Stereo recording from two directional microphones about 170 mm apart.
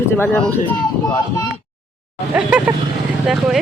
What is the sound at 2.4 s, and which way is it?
Speech, 5° right (ahead or behind).